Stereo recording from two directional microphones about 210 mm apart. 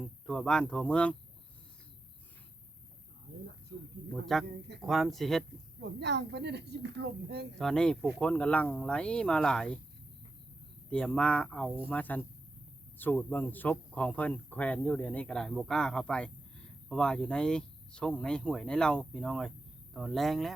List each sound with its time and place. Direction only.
0.0 s speech: centre (ahead or behind)
4.1 s speech: centre (ahead or behind)
5.8 s speech: 55° right (ahead or behind)
7.6 s speech: 5° left (ahead or behind)
10.8 s speech: 5° left (ahead or behind)